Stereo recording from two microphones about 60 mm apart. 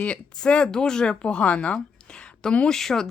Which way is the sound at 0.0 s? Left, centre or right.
Centre.